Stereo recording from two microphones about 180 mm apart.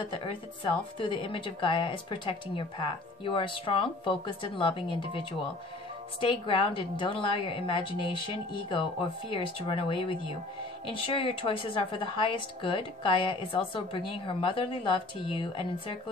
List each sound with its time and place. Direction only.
0.1 s speech: 30° left (ahead or behind)